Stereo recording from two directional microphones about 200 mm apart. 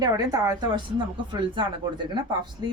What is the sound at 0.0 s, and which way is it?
Speech, 20° right (ahead or behind).